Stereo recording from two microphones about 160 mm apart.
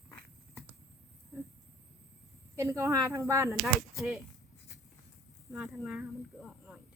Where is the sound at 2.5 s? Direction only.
20° right (ahead or behind).